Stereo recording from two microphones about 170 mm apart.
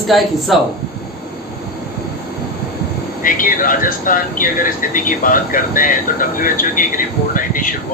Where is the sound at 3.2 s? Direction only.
55° left (ahead or behind).